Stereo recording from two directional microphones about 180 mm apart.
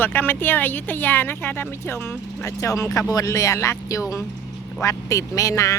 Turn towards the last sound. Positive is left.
turn(degrees=15)  # may be behind; listen again after turning